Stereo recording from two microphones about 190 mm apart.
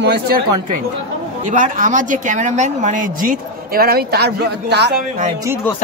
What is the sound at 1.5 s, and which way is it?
Speech, 45° right (ahead or behind).